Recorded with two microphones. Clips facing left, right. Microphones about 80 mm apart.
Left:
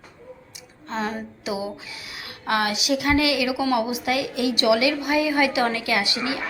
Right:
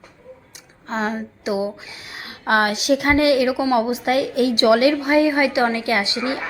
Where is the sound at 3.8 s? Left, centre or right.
Right.